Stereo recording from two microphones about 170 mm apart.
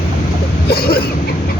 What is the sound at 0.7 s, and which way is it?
Speech, 65° left (ahead or behind).